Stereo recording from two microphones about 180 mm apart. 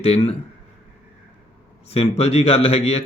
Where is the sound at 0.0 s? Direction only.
35° left (ahead or behind).